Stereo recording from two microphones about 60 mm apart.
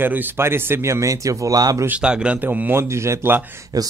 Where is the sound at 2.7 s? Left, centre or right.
Right.